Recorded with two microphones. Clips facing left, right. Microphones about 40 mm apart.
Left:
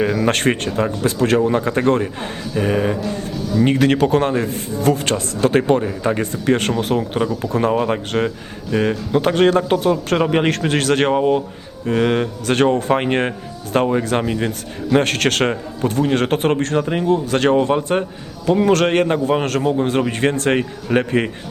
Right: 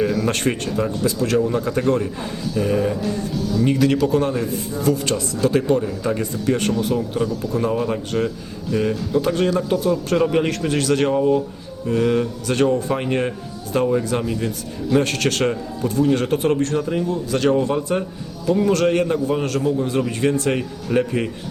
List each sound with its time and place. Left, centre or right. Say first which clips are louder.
0.3 s speech: left 4 dB; left
3.6 s a man's voice: left 3 dB; left
7.7 s a man's voice: left 3 dB; left